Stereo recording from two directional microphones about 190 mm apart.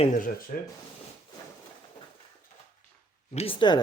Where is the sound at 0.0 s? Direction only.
45° left (ahead or behind).